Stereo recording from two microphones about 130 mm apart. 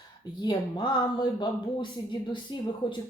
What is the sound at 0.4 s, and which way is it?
Speech, 35° left (ahead or behind).